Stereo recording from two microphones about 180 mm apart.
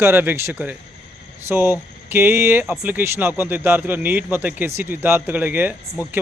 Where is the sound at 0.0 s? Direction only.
10° right (ahead or behind).